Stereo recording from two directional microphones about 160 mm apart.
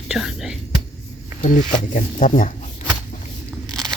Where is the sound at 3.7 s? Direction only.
5° left (ahead or behind).